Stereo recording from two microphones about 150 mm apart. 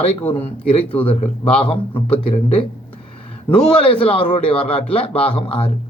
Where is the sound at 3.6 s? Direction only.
5° left (ahead or behind).